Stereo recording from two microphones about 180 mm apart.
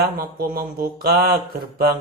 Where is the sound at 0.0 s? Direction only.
55° right (ahead or behind).